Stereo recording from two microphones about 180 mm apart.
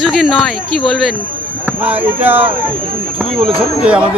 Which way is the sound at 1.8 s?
10° right (ahead or behind).